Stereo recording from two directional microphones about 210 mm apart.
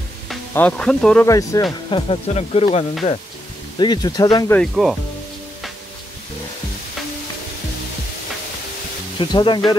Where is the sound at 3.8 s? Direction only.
20° left (ahead or behind).